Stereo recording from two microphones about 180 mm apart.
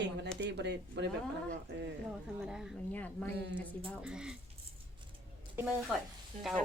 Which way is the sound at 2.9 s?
10° left (ahead or behind).